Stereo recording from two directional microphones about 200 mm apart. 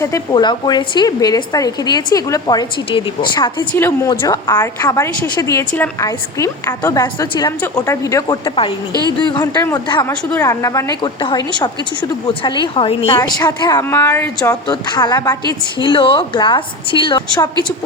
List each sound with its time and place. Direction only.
0.0 s a woman's voice: 20° left (ahead or behind)
3.7 s a woman's voice: 10° left (ahead or behind)
8.9 s speech: 20° right (ahead or behind)
9.3 s a woman's voice: 15° left (ahead or behind)